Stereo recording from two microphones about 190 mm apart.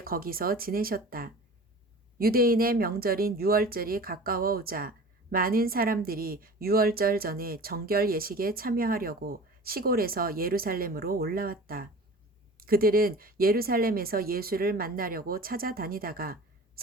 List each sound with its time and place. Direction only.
0.0 s speech: 50° right (ahead or behind)